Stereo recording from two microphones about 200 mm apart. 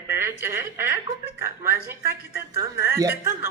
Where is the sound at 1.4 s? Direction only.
15° right (ahead or behind).